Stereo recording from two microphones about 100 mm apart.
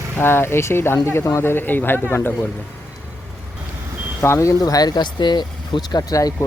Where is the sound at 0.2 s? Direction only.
25° left (ahead or behind).